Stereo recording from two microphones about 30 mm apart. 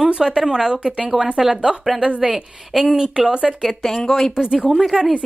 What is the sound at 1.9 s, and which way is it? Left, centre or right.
A woman's voice, right.